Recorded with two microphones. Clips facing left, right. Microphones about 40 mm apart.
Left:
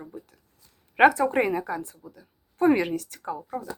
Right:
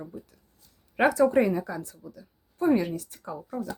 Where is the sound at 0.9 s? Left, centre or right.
Left.